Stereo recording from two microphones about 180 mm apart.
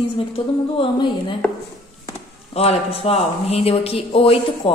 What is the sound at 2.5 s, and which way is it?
Speech, 35° left (ahead or behind).